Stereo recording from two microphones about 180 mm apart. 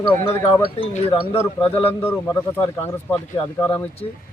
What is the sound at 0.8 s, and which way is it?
Speech, 30° left (ahead or behind).